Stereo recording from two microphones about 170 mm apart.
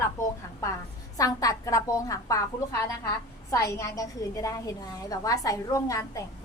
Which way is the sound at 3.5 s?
20° left (ahead or behind).